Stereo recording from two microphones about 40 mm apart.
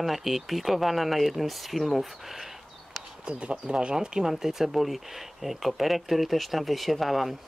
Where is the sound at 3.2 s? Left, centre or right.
Right.